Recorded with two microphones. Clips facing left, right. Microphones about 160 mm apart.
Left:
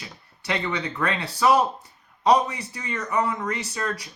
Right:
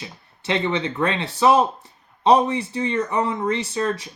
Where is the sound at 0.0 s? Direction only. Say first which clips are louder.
Right 5 dB; 25° right (ahead or behind).